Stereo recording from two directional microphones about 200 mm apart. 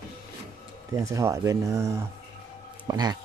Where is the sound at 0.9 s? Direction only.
15° right (ahead or behind).